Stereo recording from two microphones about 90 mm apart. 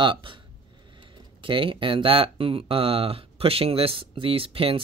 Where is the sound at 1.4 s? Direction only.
75° right (ahead or behind).